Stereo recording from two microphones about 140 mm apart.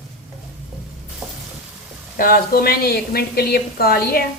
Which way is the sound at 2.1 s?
90° left.